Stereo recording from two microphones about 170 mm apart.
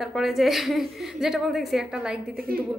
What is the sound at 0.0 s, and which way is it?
A woman's voice, centre (ahead or behind).